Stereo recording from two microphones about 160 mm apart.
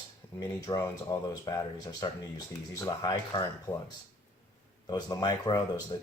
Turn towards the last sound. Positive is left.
turn(degrees=25)  # may be behind; listen again after turning